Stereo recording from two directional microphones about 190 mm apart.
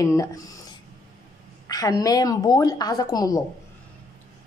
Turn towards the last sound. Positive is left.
turn(degrees=20)  # may be behind; listen again after turning